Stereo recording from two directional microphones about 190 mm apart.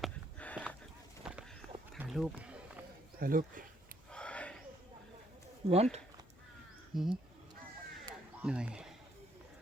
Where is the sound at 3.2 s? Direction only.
45° right (ahead or behind).